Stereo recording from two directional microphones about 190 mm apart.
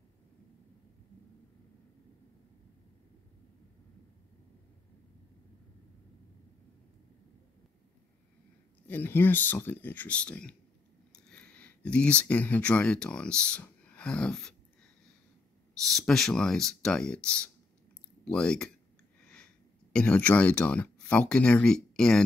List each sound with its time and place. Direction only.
8.8 s speech: 10° left (ahead or behind)
15.9 s speech: centre (ahead or behind)